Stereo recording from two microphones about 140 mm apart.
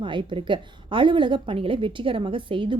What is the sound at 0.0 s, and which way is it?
A woman's voice, 35° right (ahead or behind).